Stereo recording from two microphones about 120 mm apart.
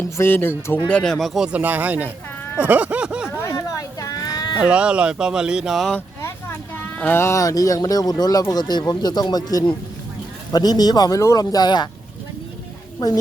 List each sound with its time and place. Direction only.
0.0 s speech: 20° left (ahead or behind)
0.9 s speech: 5° left (ahead or behind)
1.5 s speech: 15° right (ahead or behind)
2.6 s a sound: 10° right (ahead or behind)
3.4 s a sound: 25° left (ahead or behind)
4.6 s speech: 10° right (ahead or behind)
7.0 s speech: 20° left (ahead or behind); by 11.9 s 35° left (ahead or behind)